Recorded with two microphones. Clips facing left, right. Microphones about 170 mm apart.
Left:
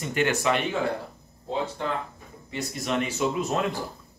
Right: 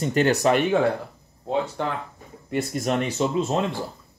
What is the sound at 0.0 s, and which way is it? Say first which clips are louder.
Speech: right 5 dB; 40° right (ahead or behind).